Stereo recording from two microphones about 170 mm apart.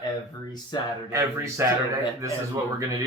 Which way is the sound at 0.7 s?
25° left (ahead or behind).